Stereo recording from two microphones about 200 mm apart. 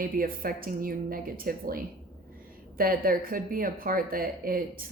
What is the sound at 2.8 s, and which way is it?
Speech, 45° right (ahead or behind).